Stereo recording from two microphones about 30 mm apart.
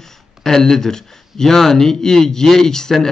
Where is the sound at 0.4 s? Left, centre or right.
Centre.